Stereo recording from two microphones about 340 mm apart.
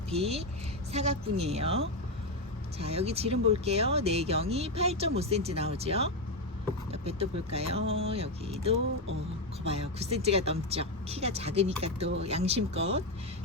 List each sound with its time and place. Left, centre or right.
0.1 s speech: centre
10.0 s speech: centre